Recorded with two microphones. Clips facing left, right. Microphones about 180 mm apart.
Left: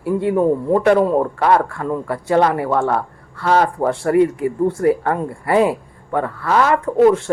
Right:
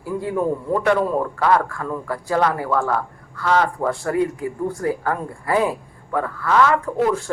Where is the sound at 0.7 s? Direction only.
30° left (ahead or behind).